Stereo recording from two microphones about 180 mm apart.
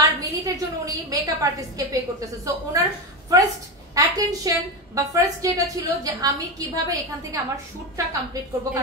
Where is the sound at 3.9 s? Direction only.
20° right (ahead or behind).